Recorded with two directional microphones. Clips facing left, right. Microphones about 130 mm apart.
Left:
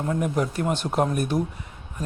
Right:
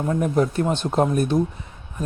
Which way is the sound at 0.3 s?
25° right (ahead or behind).